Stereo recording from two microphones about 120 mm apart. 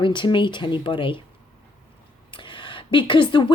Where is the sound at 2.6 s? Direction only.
45° left (ahead or behind).